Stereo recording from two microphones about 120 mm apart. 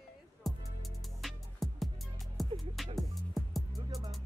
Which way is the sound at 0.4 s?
Centre (ahead or behind).